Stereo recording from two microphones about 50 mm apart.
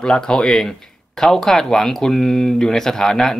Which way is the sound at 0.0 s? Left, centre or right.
Centre.